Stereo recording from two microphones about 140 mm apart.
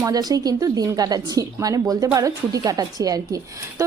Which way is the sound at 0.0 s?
25° right (ahead or behind).